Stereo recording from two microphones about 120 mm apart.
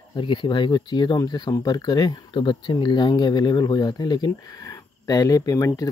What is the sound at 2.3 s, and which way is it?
Speech, 45° left (ahead or behind).